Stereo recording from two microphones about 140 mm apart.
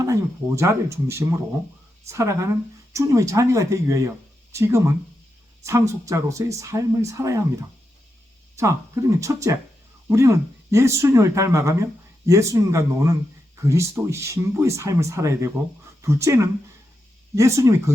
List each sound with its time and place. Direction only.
0.0 s speech: 20° right (ahead or behind)
8.5 s speech: 20° right (ahead or behind)